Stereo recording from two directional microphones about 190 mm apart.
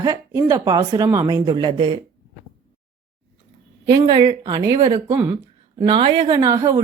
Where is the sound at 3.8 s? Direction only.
20° right (ahead or behind).